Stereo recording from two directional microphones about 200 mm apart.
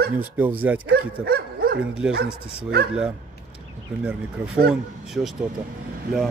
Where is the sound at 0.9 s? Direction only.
50° right (ahead or behind).